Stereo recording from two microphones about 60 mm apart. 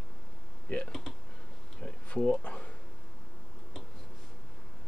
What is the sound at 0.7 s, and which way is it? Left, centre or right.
Computer keyboard, left.